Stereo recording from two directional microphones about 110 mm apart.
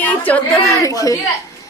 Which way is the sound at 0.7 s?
30° left (ahead or behind).